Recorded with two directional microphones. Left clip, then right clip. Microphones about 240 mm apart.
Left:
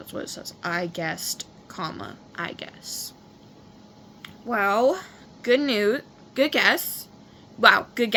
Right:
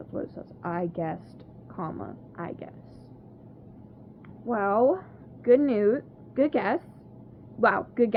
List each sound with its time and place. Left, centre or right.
0.1 s a woman's voice: left
4.4 s a woman's voice: centre